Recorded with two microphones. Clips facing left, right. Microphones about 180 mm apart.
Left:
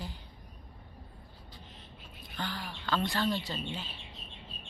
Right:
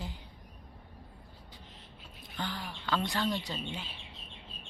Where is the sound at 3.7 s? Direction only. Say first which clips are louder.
Left 1 dB; 15° right (ahead or behind).